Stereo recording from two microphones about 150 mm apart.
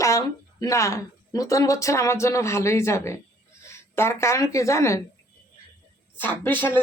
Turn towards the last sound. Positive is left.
turn(degrees=10)  # may be behind; listen again after turning